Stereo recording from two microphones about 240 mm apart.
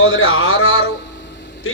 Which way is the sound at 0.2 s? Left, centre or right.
Left.